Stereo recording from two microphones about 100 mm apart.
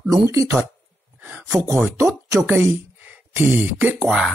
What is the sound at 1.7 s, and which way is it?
Speech, 20° right (ahead or behind).